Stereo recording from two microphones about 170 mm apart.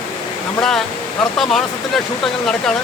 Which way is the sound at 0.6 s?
Centre (ahead or behind).